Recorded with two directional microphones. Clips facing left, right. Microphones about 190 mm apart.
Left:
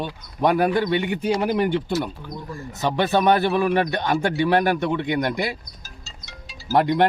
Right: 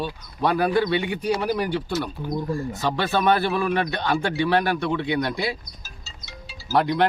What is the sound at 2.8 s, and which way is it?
Speech, 15° left (ahead or behind).